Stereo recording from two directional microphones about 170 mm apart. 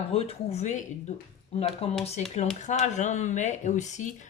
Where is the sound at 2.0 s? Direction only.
40° left (ahead or behind).